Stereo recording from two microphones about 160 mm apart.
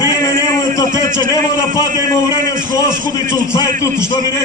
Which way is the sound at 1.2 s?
25° left (ahead or behind).